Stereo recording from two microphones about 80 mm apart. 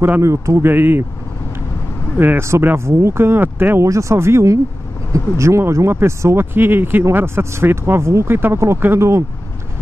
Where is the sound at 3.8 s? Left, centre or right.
Right.